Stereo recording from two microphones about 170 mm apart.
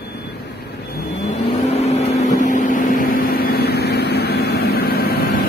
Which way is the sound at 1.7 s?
40° left (ahead or behind).